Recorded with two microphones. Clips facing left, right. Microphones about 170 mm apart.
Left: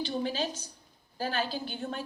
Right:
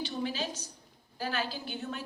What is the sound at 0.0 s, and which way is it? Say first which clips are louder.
A woman's voice: left 3 dB; 30° left (ahead or behind).